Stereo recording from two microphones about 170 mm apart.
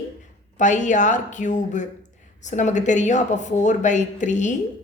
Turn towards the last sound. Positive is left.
turn(degrees=45)  # may be behind; listen again after turning